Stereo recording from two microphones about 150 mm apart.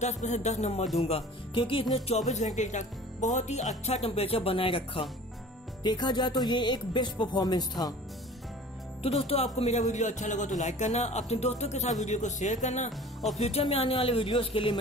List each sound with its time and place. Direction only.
0.0 s speech: 50° left (ahead or behind)
2.0 s speech: 50° left (ahead or behind); by 7.9 s 25° left (ahead or behind)
9.0 s speech: 40° left (ahead or behind)
13.4 s speech: 40° left (ahead or behind)